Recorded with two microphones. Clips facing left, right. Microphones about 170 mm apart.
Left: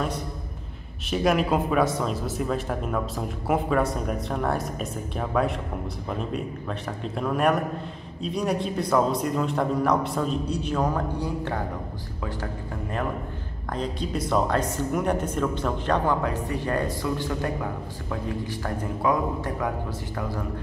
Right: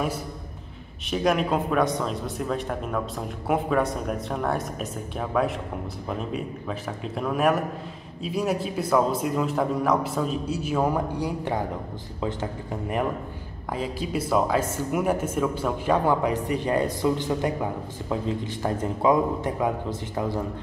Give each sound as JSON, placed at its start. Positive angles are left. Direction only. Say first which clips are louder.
{"t": 1.1, "sound": "a man's voice", "louder": "left 1 dB", "side_deg": 0}
{"t": 13.7, "sound": "a man's voice", "louder": "even", "side_deg": -5}